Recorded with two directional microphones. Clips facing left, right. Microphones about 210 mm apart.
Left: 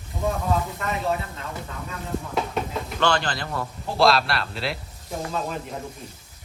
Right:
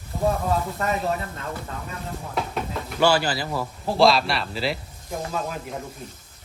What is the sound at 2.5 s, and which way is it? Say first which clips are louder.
Speech: left 1 dB; 5° right (ahead or behind).